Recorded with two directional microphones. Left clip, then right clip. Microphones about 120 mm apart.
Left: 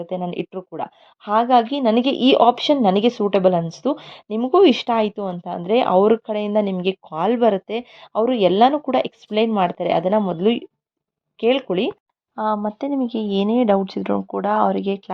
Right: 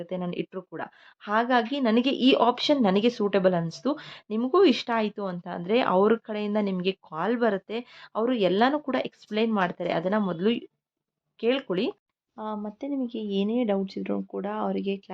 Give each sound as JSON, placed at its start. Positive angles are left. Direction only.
{"t": 0.0, "sound": "speech", "side_deg": 20}